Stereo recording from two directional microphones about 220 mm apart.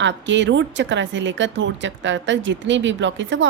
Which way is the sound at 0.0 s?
55° right (ahead or behind).